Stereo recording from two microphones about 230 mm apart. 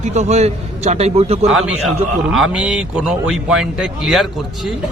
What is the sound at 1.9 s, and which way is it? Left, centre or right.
A man's voice, centre.